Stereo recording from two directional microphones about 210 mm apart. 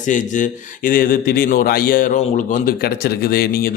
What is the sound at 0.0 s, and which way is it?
Speech, 40° left (ahead or behind).